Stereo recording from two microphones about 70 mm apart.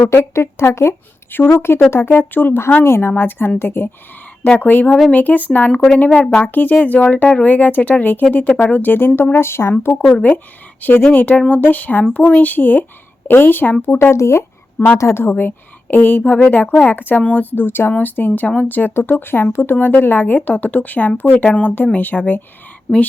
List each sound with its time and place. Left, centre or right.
0.0 s speech: left
10.2 s speech: left